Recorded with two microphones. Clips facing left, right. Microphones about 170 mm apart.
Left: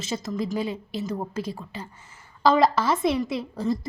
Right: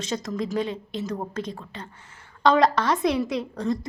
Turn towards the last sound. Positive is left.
turn(degrees=5)  # may be behind; listen again after turning